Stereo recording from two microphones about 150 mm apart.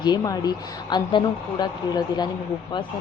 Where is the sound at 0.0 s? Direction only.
30° left (ahead or behind).